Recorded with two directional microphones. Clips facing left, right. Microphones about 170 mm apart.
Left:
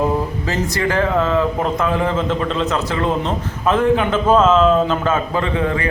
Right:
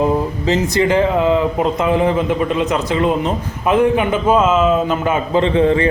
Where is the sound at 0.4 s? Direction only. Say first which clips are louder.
Right 5 dB; 20° right (ahead or behind).